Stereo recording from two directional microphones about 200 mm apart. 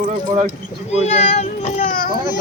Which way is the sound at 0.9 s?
35° left (ahead or behind).